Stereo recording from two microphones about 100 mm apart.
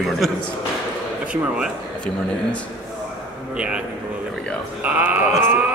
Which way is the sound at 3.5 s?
10° right (ahead or behind).